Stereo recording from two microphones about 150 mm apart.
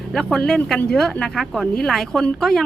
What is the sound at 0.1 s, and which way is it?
Speech, 5° left (ahead or behind).